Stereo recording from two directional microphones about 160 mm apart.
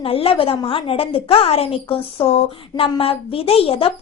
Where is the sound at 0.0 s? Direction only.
35° left (ahead or behind).